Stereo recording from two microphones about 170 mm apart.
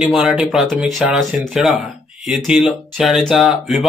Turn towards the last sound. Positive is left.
turn(degrees=0)  # may be behind; listen again after turning